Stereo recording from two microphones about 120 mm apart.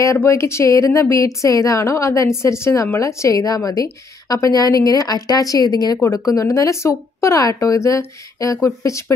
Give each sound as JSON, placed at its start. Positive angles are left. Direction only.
{"t": 0.0, "sound": "a woman's voice", "side_deg": 25}